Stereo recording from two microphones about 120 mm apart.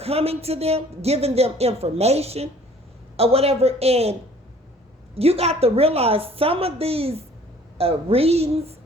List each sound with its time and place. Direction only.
0.0 s speech: 55° right (ahead or behind)
5.1 s speech: 55° right (ahead or behind)